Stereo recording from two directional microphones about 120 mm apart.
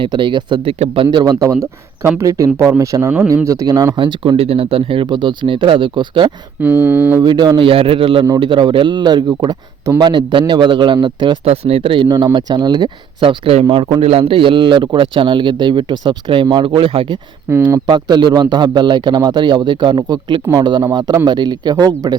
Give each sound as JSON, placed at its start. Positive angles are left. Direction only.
{"t": 0.0, "sound": "a man's voice", "side_deg": -40}
{"t": 3.9, "sound": "a man's voice", "side_deg": -45}
{"t": 6.6, "sound": "speech", "side_deg": -15}
{"t": 7.2, "sound": "a man's voice", "side_deg": -35}
{"t": 7.6, "sound": "a man's voice", "side_deg": -50}
{"t": 11.4, "sound": "a man's voice", "side_deg": -55}
{"t": 12.0, "sound": "a man's voice", "side_deg": -35}
{"t": 17.5, "sound": "speech", "side_deg": -20}
{"t": 17.8, "sound": "a man's voice", "side_deg": -40}